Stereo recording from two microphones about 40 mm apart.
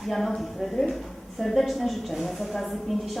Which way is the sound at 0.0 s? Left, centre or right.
Centre.